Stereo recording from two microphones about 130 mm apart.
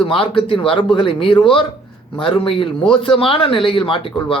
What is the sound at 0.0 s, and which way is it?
Speech, 45° left (ahead or behind).